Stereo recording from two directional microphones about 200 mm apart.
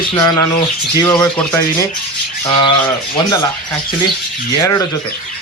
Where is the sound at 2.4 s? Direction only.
20° left (ahead or behind).